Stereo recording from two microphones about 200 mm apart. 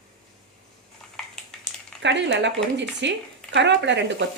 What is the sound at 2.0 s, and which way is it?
Speech, 60° right (ahead or behind).